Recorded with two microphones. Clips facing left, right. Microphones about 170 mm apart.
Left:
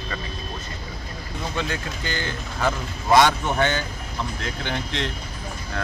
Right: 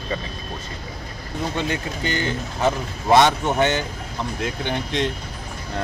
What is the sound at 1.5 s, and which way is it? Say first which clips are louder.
Speech: right 1 dB; 20° right (ahead or behind).